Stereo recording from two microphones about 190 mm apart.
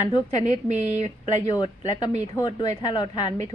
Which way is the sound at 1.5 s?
25° left (ahead or behind).